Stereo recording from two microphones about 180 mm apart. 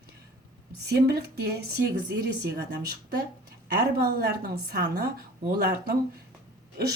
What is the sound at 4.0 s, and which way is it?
Speech, 60° right (ahead or behind).